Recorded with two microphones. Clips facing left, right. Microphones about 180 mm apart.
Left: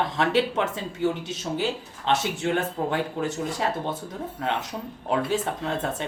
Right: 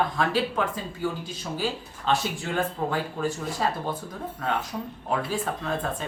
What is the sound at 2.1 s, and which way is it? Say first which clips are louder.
Speech: left 2 dB; 20° left (ahead or behind).